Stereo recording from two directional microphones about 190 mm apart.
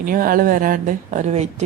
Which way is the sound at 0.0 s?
50° right (ahead or behind).